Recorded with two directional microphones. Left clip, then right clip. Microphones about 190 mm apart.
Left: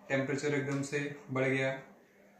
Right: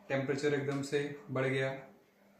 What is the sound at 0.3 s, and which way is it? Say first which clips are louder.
Speech: right 1 dB; 15° right (ahead or behind).